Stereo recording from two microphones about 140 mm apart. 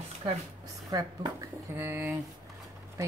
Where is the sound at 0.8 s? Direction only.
25° right (ahead or behind).